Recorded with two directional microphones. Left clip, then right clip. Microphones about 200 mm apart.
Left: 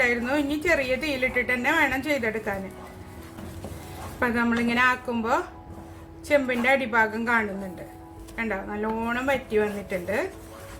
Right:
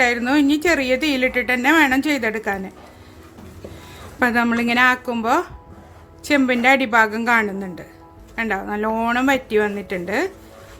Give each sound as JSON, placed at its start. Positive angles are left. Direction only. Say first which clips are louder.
{"t": 0.0, "sound": "a woman's voice", "louder": "right 6 dB", "side_deg": -45}
{"t": 4.2, "sound": "a woman's voice", "louder": "right 6 dB", "side_deg": -45}